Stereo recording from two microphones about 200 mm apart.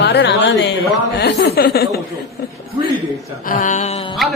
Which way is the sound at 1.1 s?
55° left (ahead or behind).